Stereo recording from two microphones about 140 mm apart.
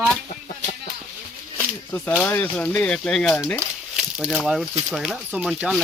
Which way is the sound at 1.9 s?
15° left (ahead or behind).